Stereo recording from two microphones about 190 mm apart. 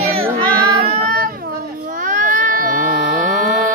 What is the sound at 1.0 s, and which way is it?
Baby cry, 50° right (ahead or behind).